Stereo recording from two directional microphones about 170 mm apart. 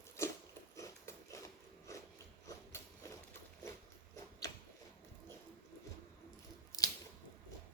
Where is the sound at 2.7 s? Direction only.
15° left (ahead or behind).